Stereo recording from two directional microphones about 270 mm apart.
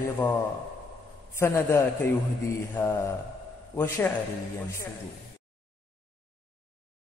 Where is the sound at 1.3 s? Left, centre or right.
Centre.